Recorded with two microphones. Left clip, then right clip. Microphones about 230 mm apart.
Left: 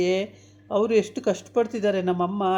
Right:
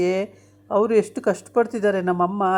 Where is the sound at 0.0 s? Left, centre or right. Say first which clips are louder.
Right 2 dB; right.